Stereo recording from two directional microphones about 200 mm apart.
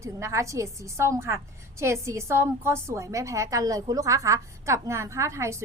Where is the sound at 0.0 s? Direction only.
15° right (ahead or behind).